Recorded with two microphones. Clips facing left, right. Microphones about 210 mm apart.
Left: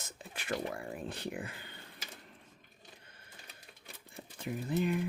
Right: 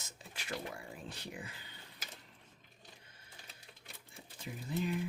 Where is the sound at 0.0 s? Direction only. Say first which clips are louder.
Left 4 dB; 55° left (ahead or behind).